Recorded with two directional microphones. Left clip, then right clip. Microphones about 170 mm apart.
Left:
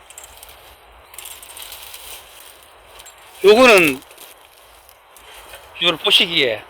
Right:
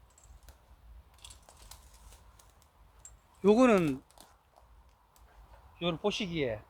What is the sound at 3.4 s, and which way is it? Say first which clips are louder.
Speech: left 15 dB; 10° right (ahead or behind).